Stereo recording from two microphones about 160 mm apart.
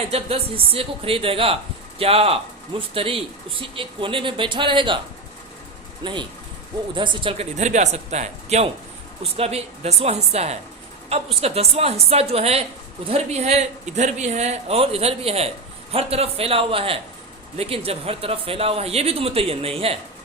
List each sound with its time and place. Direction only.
0.1 s a man's voice: 40° right (ahead or behind)
6.0 s a man's voice: 30° right (ahead or behind)